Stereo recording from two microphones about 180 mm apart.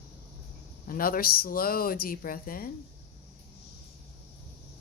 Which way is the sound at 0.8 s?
50° left (ahead or behind).